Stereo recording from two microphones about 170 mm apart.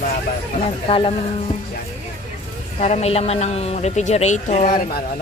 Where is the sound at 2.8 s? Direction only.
40° left (ahead or behind).